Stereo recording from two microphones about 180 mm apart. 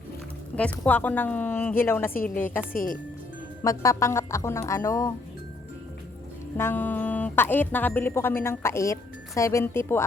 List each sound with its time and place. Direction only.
0.5 s speech: 10° left (ahead or behind)
2.7 s speech: 50° left (ahead or behind)
3.6 s speech: 15° left (ahead or behind)
6.6 s speech: 10° left (ahead or behind)